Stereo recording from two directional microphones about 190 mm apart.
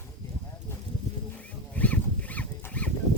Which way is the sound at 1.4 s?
5° left (ahead or behind).